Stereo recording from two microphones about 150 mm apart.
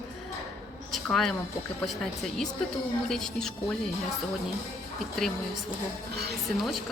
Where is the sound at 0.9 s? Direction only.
Centre (ahead or behind).